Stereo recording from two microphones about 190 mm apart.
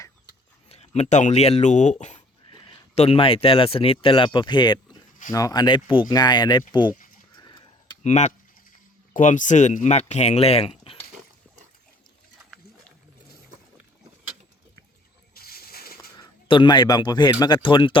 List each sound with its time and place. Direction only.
0.7 s speech: 35° left (ahead or behind)
7.3 s a sound: 20° left (ahead or behind)
8.0 s speech: 35° left (ahead or behind)
12.5 s roaring cats: centre (ahead or behind)
15.4 s a sound: 55° left (ahead or behind)
16.1 s a man's voice: 25° left (ahead or behind)